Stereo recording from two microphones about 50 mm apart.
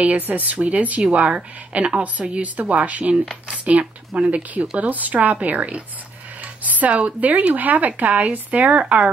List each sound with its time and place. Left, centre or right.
0.0 s a woman's voice: right